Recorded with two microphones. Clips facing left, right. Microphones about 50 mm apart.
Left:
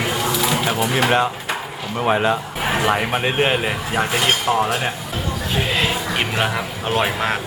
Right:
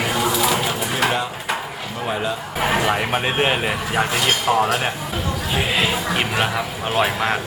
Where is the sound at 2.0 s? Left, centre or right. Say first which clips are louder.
Left 6 dB; left.